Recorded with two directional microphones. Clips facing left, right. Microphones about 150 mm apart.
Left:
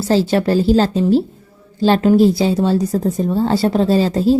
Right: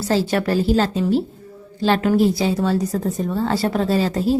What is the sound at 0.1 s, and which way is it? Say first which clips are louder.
A woman's voice: left 4 dB; 30° left (ahead or behind).